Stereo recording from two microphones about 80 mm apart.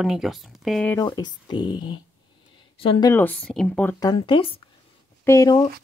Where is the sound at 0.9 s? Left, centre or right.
Left.